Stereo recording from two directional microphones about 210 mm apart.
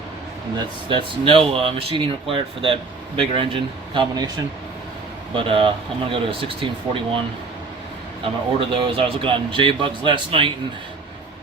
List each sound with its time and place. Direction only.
0.5 s speech: 25° right (ahead or behind)
5.4 s speech: 25° right (ahead or behind)